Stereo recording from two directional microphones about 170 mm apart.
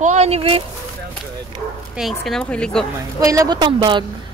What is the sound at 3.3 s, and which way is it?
Speech, 20° right (ahead or behind).